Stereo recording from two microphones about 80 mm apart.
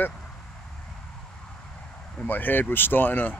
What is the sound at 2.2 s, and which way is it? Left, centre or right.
Speech, left.